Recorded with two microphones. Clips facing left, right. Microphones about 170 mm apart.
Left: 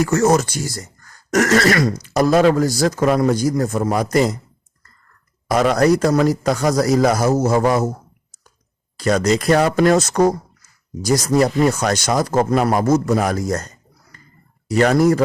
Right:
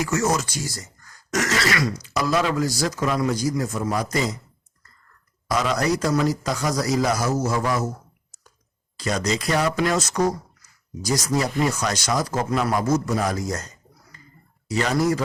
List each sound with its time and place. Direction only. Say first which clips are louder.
0.0 s speech: left 7 dB; 55° left (ahead or behind)
5.5 s speech: left 7 dB; 55° left (ahead or behind)
9.0 s speech: left 8 dB; 55° left (ahead or behind)
14.7 s speech: left 7 dB; 55° left (ahead or behind)